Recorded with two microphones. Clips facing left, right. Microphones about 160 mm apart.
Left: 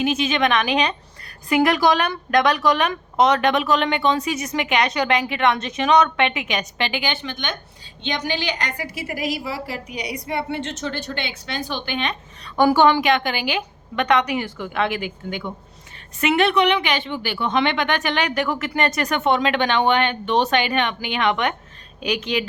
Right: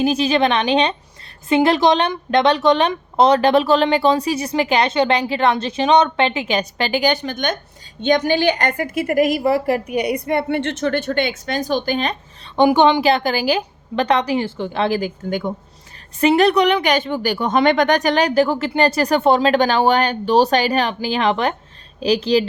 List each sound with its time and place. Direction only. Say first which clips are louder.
0.0 s a woman's voice: right 4 dB; 35° right (ahead or behind)
12.5 s a woman's voice: right 2 dB; 20° right (ahead or behind)
13.0 s a woman's voice: right 3 dB; 35° right (ahead or behind)